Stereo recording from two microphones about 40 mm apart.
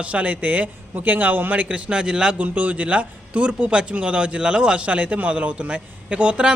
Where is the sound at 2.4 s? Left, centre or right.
Right.